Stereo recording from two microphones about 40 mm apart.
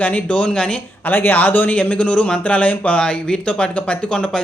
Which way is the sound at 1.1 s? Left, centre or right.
Left.